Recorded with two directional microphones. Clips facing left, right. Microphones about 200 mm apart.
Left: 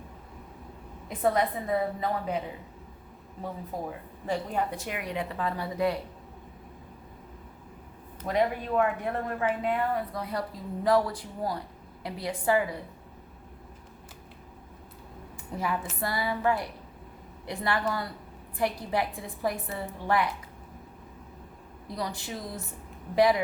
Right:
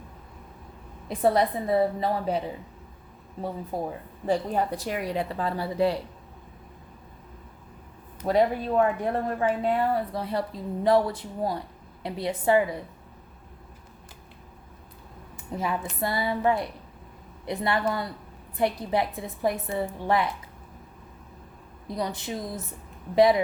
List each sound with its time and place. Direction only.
1.0 s a woman's voice: 35° right (ahead or behind)
3.7 s a woman's voice: 30° right (ahead or behind)
8.3 s a woman's voice: 30° right (ahead or behind)
15.5 s a woman's voice: 25° right (ahead or behind)
21.9 s a woman's voice: 20° right (ahead or behind)